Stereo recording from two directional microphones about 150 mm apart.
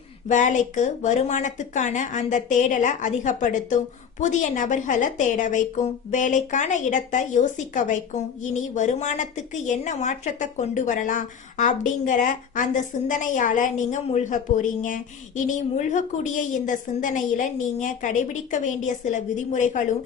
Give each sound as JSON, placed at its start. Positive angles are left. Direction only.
{"t": 0.3, "sound": "a woman's voice", "side_deg": 55}